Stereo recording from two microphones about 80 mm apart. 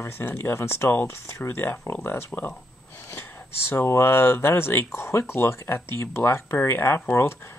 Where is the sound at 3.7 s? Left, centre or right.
Left.